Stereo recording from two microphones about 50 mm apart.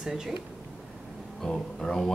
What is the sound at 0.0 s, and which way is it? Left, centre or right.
Speech, centre.